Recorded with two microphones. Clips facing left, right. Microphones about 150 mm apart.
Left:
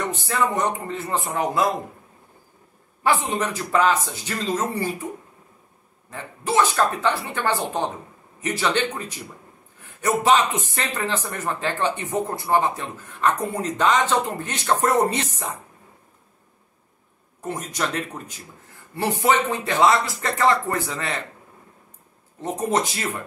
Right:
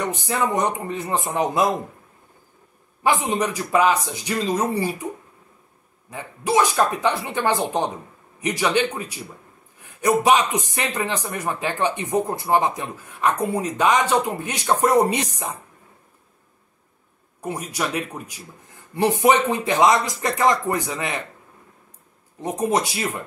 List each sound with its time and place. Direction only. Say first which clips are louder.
0.0 s speech: even; 15° right (ahead or behind)
3.0 s speech: right 1 dB; 15° right (ahead or behind)
6.0 s speech: right 2 dB; 10° right (ahead or behind)
17.4 s speech: right 1 dB; 10° right (ahead or behind)
22.4 s speech: right 1 dB; 15° right (ahead or behind)